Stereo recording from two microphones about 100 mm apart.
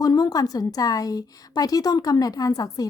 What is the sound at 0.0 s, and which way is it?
A woman's voice, 40° left (ahead or behind).